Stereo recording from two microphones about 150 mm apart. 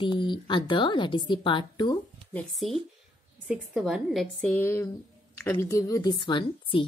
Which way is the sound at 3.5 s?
Centre (ahead or behind).